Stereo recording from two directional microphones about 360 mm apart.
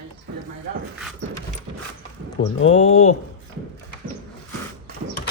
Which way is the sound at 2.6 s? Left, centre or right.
Centre.